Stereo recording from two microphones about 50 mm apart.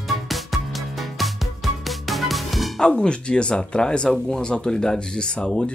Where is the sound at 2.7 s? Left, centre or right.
Centre.